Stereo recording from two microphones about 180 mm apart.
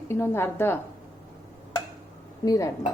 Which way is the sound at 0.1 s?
10° left (ahead or behind).